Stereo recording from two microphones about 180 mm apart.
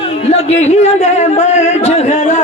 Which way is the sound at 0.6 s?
40° left (ahead or behind).